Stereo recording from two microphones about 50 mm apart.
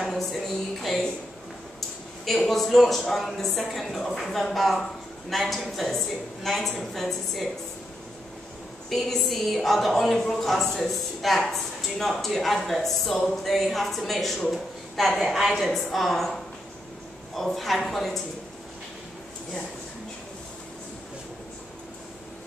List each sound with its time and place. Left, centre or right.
0.0 s a sound: centre
2.2 s a woman's voice: centre
8.8 s a woman's voice: centre